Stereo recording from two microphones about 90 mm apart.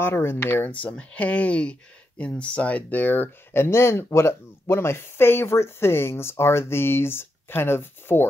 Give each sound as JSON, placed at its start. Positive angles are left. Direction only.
{"t": 0.0, "sound": "speech", "side_deg": 25}
{"t": 0.7, "sound": "speech", "side_deg": 15}